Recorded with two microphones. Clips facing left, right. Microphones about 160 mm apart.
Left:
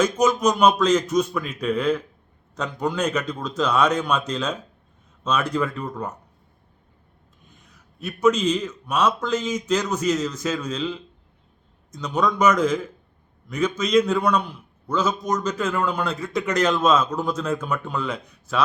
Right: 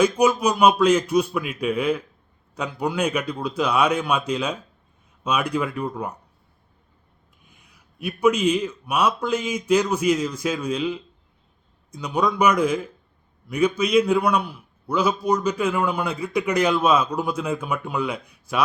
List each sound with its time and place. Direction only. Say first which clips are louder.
0.0 s a man's voice: right 1 dB; 10° right (ahead or behind)
7.6 s a man's voice: right 3 dB; 10° right (ahead or behind)